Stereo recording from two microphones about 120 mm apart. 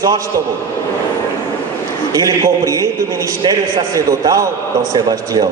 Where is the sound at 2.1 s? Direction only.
30° right (ahead or behind).